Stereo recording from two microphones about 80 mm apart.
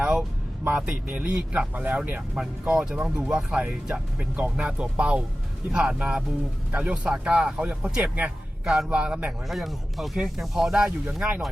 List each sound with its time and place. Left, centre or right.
0.0 s music: centre
0.6 s speech: centre
9.5 s speech: centre